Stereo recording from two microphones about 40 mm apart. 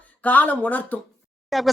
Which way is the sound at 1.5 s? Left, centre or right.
Centre.